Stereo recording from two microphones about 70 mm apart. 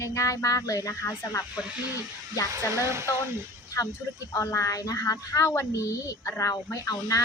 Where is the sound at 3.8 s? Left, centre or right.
Left.